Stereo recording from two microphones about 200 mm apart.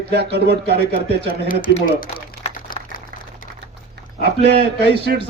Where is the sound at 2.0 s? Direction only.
45° left (ahead or behind).